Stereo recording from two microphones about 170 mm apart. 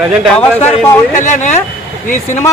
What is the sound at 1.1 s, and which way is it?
Speech, 45° left (ahead or behind).